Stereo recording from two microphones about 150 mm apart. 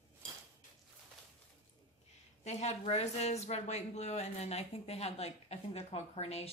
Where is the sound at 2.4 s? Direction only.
45° left (ahead or behind).